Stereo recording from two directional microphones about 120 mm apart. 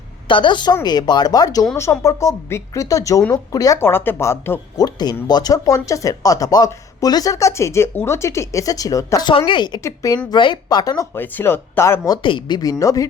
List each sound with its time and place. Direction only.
0.3 s speech: 40° left (ahead or behind); by 4.6 s 20° left (ahead or behind)
4.8 s speech: 35° left (ahead or behind)
9.5 s speech: 40° left (ahead or behind)
9.8 s speech: 30° left (ahead or behind)
10.3 s speech: 40° left (ahead or behind)
11.1 s speech: 20° left (ahead or behind)
12.2 s speech: 40° left (ahead or behind)